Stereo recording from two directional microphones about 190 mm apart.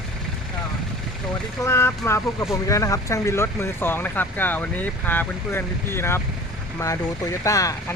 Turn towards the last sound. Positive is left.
turn(degrees=15)  # may be behind; listen again after turning